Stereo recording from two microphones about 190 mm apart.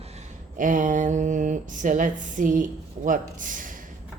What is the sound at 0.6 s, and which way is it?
A woman's voice, 45° right (ahead or behind).